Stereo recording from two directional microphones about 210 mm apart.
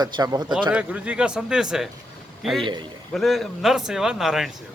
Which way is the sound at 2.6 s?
20° right (ahead or behind).